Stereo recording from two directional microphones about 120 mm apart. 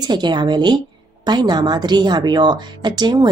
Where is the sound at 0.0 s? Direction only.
35° right (ahead or behind).